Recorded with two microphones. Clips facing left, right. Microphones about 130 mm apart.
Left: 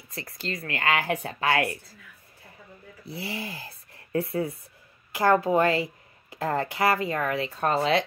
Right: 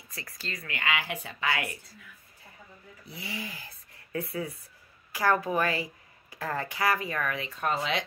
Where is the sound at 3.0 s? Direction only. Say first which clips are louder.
Left 5 dB; 35° left (ahead or behind).